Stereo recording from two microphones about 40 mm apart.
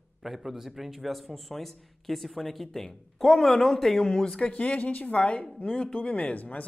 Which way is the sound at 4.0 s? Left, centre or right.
Centre.